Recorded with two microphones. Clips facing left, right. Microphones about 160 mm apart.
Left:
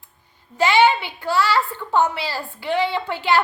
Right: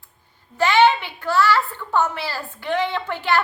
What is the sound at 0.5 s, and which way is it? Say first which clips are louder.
A woman's voice: even; 10° left (ahead or behind).